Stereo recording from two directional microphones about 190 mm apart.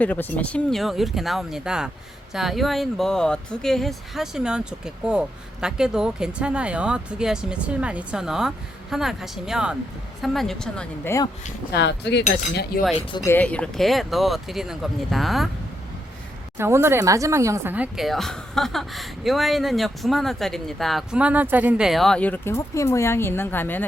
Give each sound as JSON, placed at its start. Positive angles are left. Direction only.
{"t": 0.0, "sound": "a woman's voice", "side_deg": 10}
{"t": 11.7, "sound": "speech", "side_deg": 65}
{"t": 12.7, "sound": "speech", "side_deg": 50}
{"t": 13.1, "sound": "speech", "side_deg": 20}
{"t": 13.3, "sound": "a woman's voice", "side_deg": 5}
{"t": 16.6, "sound": "a woman's voice", "side_deg": -15}